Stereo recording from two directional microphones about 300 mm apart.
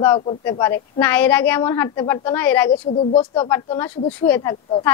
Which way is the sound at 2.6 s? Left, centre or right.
Left.